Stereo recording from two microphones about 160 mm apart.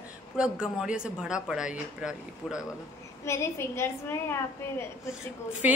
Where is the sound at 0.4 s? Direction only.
5° right (ahead or behind).